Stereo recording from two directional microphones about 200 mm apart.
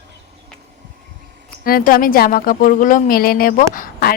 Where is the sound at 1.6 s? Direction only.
45° left (ahead or behind).